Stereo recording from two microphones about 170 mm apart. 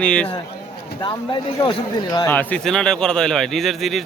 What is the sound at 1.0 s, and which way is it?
Speech, 25° left (ahead or behind).